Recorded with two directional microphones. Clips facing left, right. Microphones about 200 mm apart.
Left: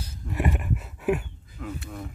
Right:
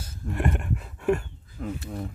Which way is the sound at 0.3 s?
5° left (ahead or behind).